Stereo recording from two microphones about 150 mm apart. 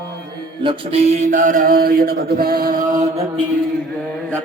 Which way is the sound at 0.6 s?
45° right (ahead or behind).